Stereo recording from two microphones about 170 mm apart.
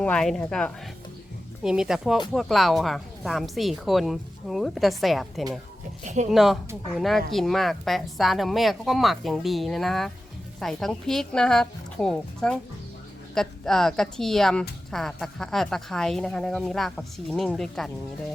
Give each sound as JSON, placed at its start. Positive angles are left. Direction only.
{"t": 0.0, "sound": "speech", "side_deg": 5}
{"t": 6.0, "sound": "speech", "side_deg": -45}
{"t": 6.3, "sound": "speech", "side_deg": 0}